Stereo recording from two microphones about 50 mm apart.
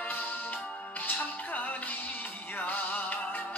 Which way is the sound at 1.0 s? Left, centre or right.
Left.